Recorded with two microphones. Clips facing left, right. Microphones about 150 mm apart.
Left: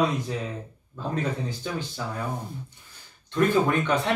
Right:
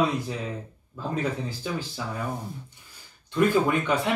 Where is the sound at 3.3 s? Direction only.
10° right (ahead or behind).